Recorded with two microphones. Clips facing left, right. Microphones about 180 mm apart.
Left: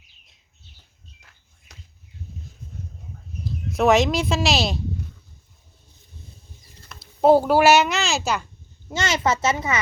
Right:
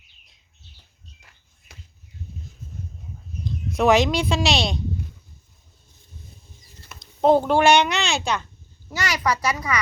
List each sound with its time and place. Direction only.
3.4 s speech: centre (ahead or behind)
7.0 s a child's voice: 5° left (ahead or behind)
8.9 s speech: 25° left (ahead or behind)